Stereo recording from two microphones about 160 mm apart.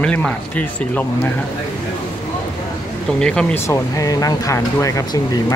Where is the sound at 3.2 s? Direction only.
5° left (ahead or behind).